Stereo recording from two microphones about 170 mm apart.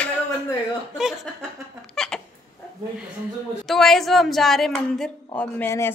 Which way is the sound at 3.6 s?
Centre (ahead or behind).